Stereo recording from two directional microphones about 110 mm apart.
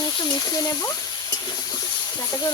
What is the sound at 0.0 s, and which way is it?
Speech, 35° left (ahead or behind).